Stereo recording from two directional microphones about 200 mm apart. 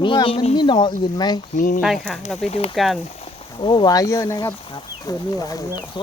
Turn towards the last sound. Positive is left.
turn(degrees=20)  # may be behind; listen again after turning